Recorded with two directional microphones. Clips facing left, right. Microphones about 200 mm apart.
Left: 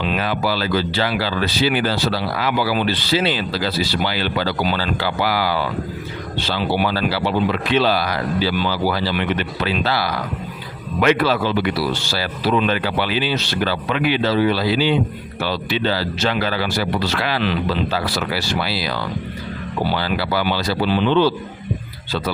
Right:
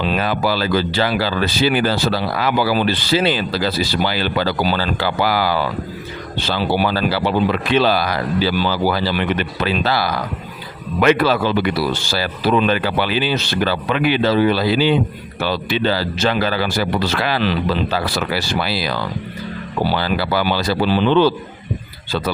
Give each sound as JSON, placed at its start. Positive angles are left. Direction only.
{"t": 0.0, "sound": "speech", "side_deg": -40}
{"t": 6.7, "sound": "speech", "side_deg": -40}
{"t": 20.0, "sound": "speech", "side_deg": -45}